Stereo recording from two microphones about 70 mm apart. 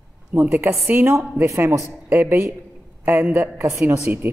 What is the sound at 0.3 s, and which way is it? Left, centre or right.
Speech, right.